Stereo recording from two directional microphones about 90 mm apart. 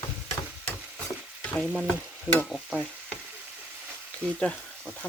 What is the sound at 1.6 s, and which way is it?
Speech, 5° right (ahead or behind).